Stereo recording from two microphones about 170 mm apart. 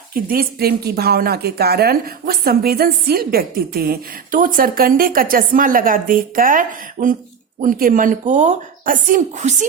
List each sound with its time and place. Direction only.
0.1 s speech: 60° right (ahead or behind)